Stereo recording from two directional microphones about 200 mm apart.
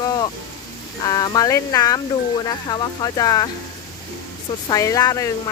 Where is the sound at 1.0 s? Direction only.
20° left (ahead or behind).